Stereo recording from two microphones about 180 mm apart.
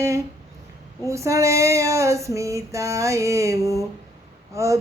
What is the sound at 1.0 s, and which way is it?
Female singing, 15° right (ahead or behind).